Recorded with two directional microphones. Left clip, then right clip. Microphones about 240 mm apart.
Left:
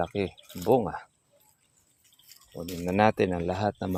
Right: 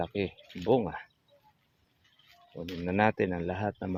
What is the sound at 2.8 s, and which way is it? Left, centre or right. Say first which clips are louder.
Speech: left 4 dB; left.